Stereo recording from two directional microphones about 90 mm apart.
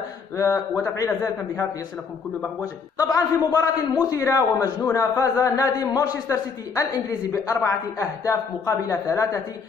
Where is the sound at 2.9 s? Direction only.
40° left (ahead or behind).